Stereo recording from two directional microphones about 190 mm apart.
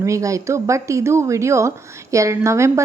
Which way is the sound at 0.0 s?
15° right (ahead or behind).